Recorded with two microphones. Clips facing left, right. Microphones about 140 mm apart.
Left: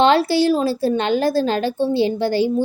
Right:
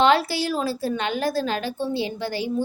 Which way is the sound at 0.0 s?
30° left (ahead or behind).